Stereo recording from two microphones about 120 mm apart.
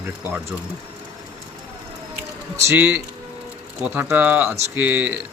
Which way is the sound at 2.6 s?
20° right (ahead or behind).